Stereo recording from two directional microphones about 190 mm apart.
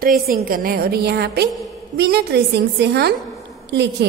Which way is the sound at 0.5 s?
50° right (ahead or behind).